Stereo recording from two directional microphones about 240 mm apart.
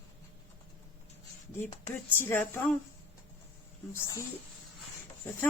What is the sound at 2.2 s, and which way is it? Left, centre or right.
Speech, centre.